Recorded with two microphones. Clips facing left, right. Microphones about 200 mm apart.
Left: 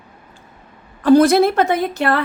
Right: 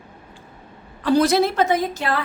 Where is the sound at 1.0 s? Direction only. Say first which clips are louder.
Left 6 dB; 50° left (ahead or behind).